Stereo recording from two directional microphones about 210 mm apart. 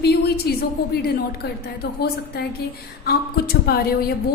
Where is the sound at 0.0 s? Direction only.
50° left (ahead or behind).